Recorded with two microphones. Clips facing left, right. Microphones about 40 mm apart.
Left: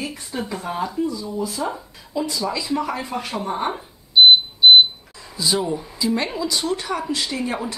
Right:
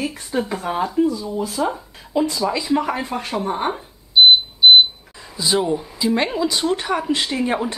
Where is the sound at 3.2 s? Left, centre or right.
Centre.